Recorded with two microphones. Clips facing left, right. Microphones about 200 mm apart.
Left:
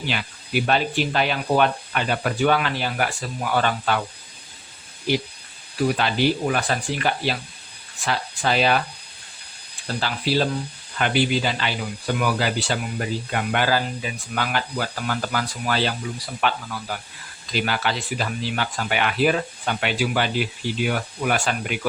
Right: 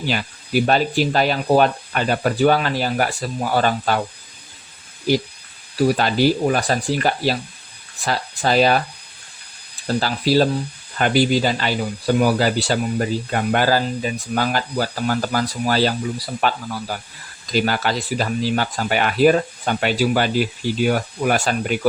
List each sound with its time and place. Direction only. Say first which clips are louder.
0.0 s speech: right 4 dB; 40° right (ahead or behind)
6.0 s speech: right 4 dB; 40° right (ahead or behind)
9.8 s speech: right 6 dB; 40° right (ahead or behind)